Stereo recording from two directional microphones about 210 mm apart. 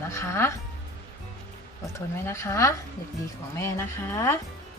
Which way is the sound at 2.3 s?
10° left (ahead or behind).